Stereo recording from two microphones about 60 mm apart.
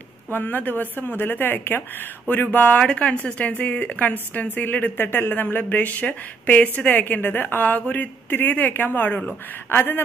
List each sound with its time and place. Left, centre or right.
0.3 s speech: left
2.8 s speech: centre; by 10.0 s left